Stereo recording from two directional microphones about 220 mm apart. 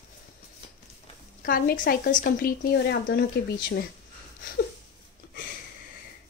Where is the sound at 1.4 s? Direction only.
40° left (ahead or behind).